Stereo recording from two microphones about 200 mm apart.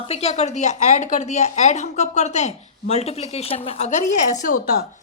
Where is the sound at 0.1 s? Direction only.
30° left (ahead or behind).